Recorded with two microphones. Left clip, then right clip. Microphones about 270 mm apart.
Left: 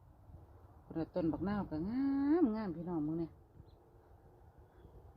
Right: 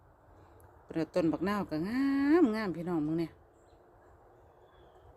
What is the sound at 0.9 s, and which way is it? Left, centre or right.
Speech, right.